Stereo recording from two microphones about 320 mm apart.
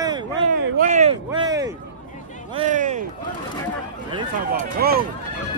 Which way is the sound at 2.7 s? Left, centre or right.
Right.